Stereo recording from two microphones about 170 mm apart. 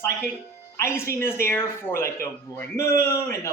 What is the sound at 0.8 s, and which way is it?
A man's voice, 15° left (ahead or behind).